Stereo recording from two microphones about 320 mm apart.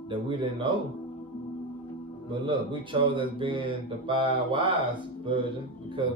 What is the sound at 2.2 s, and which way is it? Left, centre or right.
Speech, centre.